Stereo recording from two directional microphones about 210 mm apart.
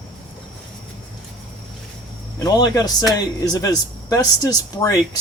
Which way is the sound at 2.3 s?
20° left (ahead or behind).